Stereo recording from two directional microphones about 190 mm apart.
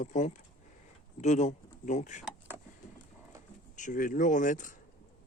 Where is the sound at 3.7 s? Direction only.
40° left (ahead or behind).